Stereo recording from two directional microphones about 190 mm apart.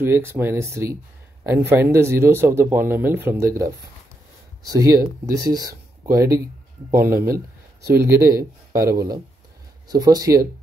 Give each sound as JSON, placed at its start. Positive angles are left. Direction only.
{"t": 0.0, "sound": "speech", "side_deg": -15}